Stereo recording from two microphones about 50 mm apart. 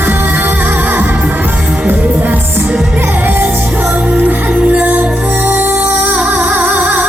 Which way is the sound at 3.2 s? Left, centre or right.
Right.